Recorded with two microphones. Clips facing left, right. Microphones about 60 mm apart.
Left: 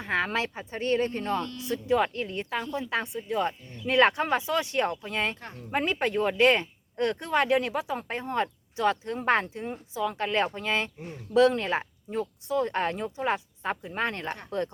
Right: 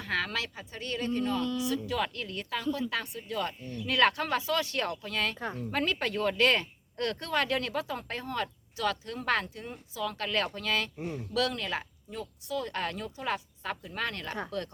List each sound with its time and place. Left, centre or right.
0.0 s speech: left